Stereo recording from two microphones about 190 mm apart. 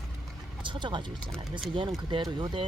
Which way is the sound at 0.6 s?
25° right (ahead or behind).